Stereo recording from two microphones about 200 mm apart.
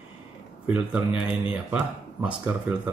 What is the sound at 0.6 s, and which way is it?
Speech, 5° right (ahead or behind).